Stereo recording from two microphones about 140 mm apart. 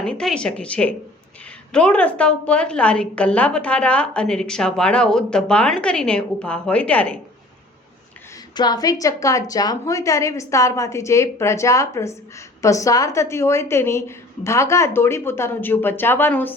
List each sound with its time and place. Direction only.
0.0 s a woman's voice: 5° left (ahead or behind)
8.5 s a woman's voice: 30° left (ahead or behind); by 16.6 s 15° left (ahead or behind)